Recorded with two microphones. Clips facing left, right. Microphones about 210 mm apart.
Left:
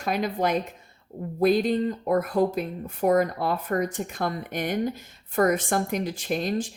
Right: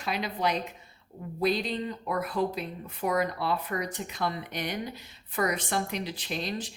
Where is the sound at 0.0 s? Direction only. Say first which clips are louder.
Left 5 dB; 45° left (ahead or behind).